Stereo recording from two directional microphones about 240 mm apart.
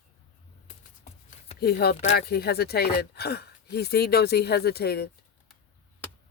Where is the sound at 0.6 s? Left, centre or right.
Left.